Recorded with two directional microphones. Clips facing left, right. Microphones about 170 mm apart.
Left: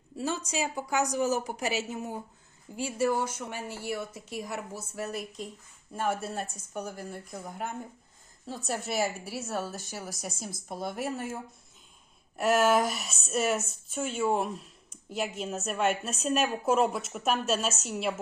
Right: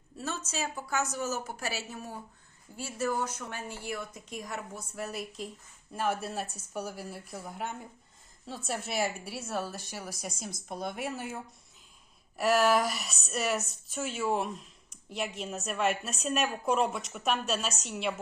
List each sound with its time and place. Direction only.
0.2 s a woman's voice: 10° left (ahead or behind)
12.4 s speech: centre (ahead or behind)